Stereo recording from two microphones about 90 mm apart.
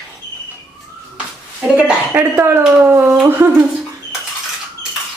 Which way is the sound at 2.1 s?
30° right (ahead or behind).